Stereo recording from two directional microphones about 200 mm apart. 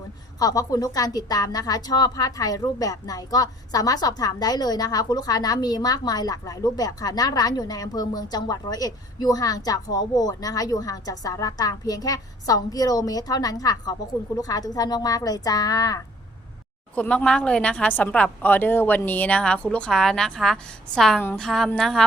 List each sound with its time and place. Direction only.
0.3 s a woman's voice: 20° left (ahead or behind)
16.9 s a woman's voice: 5° left (ahead or behind)